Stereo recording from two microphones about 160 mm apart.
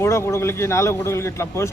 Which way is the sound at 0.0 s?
15° left (ahead or behind).